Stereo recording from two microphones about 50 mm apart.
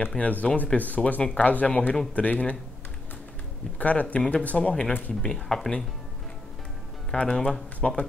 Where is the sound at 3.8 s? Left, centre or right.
Left.